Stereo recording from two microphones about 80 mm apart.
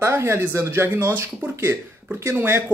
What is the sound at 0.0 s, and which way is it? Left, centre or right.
Speech, right.